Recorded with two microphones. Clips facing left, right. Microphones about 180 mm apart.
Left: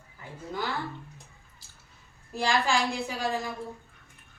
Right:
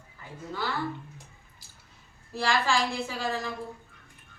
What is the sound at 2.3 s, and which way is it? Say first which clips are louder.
A woman's voice: even; 15° left (ahead or behind).